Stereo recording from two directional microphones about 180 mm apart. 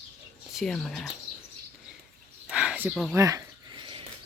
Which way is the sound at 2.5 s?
5° right (ahead or behind).